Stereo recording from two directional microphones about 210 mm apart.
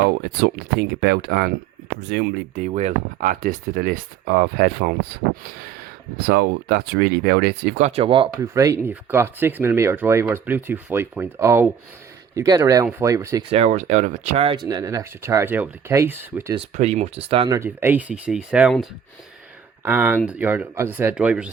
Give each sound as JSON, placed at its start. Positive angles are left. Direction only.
{"t": 0.3, "sound": "speech", "side_deg": -50}
{"t": 2.6, "sound": "speech", "side_deg": -35}
{"t": 6.2, "sound": "speech", "side_deg": -50}
{"t": 7.8, "sound": "speech", "side_deg": -30}
{"t": 13.5, "sound": "speech", "side_deg": -35}
{"t": 16.6, "sound": "speech", "side_deg": -30}
{"t": 17.5, "sound": "speech", "side_deg": -10}